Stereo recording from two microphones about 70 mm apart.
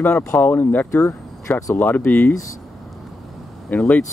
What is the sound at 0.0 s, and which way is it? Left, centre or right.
Speech, left.